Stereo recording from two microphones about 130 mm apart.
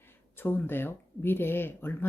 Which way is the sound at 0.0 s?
15° left (ahead or behind).